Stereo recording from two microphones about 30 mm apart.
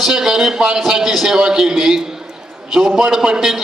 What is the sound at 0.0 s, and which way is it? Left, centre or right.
A man's voice, centre.